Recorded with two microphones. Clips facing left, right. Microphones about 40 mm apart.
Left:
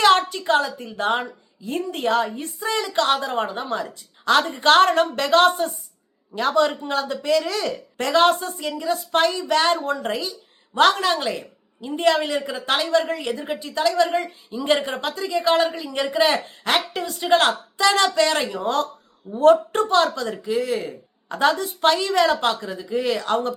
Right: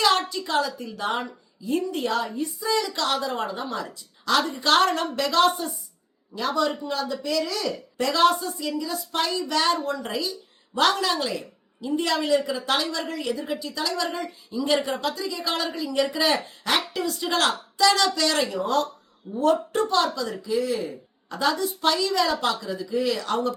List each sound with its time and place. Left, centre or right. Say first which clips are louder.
0.0 s a woman's voice: left 5 dB; left
19.3 s speech: left 7 dB; left